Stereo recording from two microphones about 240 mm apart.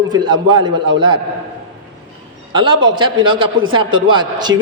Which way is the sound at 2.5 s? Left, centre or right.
Centre.